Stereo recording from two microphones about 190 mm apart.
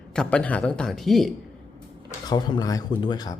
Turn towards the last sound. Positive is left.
turn(degrees=20)  # may be behind; listen again after turning